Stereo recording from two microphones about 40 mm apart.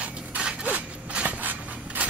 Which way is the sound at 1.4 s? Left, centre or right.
Right.